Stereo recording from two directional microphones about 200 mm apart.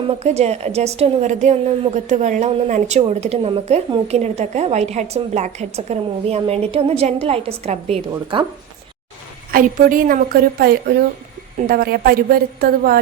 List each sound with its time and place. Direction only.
0.1 s a woman's voice: 30° right (ahead or behind)
9.5 s a woman's voice: 45° right (ahead or behind)